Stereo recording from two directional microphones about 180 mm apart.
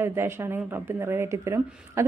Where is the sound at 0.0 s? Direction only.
15° right (ahead or behind).